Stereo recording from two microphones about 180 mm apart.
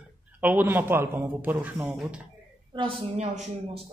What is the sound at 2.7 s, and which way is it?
Speech, 30° right (ahead or behind).